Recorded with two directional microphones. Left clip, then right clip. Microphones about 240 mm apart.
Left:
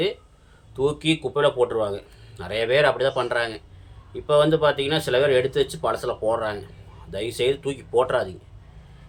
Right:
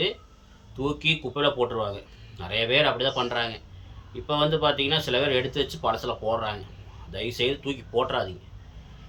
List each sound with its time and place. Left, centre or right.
0.8 s speech: centre